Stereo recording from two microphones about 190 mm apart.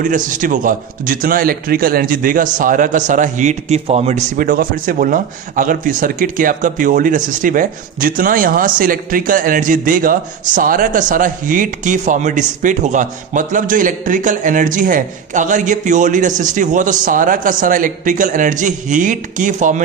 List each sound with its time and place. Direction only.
0.0 s speech: 45° right (ahead or behind)